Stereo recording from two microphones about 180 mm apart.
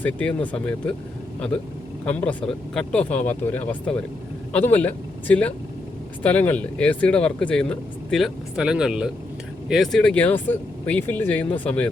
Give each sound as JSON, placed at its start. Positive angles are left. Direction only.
{"t": 0.0, "sound": "speech", "side_deg": 5}
{"t": 2.0, "sound": "speech", "side_deg": 5}